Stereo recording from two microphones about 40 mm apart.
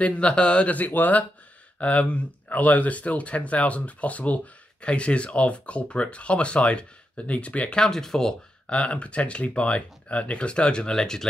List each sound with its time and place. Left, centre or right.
0.0 s speech: left
1.8 s speech: left
7.8 s speech: centre
8.6 s speech: left